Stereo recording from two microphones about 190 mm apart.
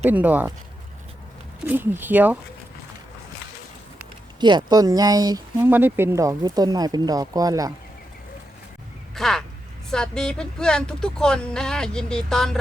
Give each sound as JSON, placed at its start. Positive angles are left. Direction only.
{"t": 0.1, "sound": "speech", "side_deg": -10}
{"t": 1.6, "sound": "speech", "side_deg": -10}
{"t": 4.4, "sound": "speech", "side_deg": -25}
{"t": 9.1, "sound": "a sound", "side_deg": 0}
{"t": 9.9, "sound": "speech", "side_deg": 5}